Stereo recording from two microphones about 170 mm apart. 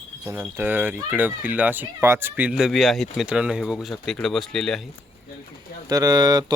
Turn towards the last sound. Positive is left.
turn(degrees=-25)  # may be behind; listen again after turning